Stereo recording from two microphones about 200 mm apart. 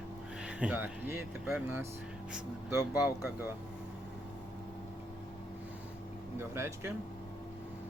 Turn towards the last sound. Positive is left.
turn(degrees=-10)  # may be behind; listen again after turning